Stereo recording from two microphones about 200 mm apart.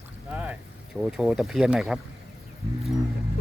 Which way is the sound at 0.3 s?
5° right (ahead or behind).